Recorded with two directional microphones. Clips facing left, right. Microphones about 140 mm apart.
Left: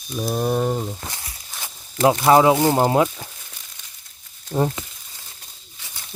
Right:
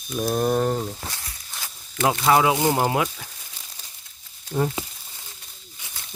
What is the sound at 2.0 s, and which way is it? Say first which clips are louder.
Speech: left 5 dB; 30° left (ahead or behind).